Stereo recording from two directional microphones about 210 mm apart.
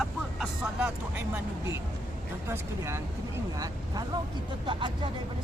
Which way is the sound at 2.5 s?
10° right (ahead or behind).